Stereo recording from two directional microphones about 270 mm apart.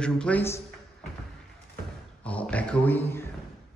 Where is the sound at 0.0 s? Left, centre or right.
Centre.